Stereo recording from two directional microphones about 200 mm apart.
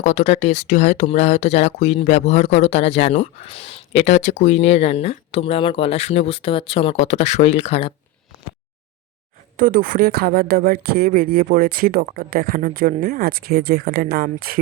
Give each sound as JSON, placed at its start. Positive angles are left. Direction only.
{"t": 0.0, "sound": "speech", "side_deg": 35}
{"t": 9.6, "sound": "speech", "side_deg": -45}